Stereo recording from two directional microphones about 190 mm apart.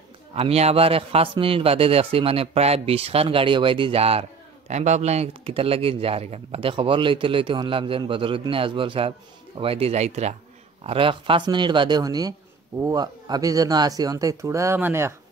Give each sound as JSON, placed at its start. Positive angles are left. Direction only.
{"t": 0.3, "sound": "a man's voice", "side_deg": -30}